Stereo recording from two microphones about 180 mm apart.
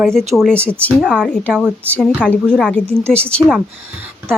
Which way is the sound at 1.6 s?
10° right (ahead or behind).